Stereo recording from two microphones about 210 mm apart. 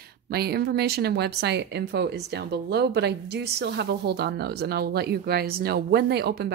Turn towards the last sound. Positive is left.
turn(degrees=-50)  # may be behind; listen again after turning